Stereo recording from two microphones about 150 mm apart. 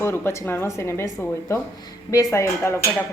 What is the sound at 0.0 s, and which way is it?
Child singing, 15° left (ahead or behind).